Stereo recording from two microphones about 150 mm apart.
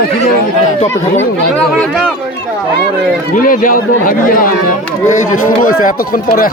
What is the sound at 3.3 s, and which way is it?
A man's voice, 65° left (ahead or behind).